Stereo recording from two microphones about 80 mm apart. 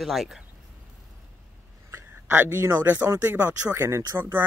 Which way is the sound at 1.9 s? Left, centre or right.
Right.